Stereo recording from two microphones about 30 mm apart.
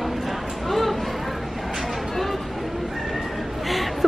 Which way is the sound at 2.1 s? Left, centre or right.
Centre.